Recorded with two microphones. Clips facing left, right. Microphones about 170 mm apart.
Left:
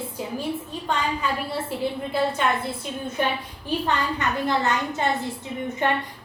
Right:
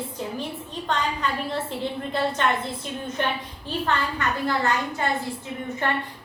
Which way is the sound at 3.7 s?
15° left (ahead or behind).